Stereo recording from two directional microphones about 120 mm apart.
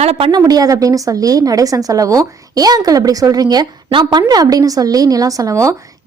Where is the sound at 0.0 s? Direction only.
60° right (ahead or behind).